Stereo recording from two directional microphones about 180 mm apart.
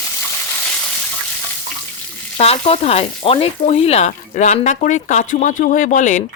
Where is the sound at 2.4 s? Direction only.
35° left (ahead or behind).